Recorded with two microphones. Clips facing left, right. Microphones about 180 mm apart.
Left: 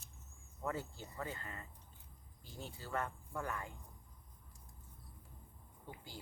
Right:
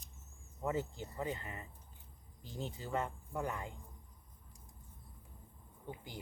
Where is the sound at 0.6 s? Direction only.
20° right (ahead or behind).